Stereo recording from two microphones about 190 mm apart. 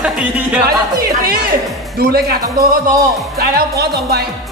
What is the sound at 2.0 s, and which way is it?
Speech, 50° right (ahead or behind).